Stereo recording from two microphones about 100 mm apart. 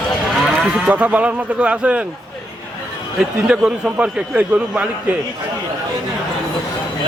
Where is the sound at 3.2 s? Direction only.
10° right (ahead or behind).